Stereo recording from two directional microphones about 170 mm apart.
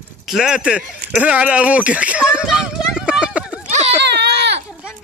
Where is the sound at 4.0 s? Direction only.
80° right.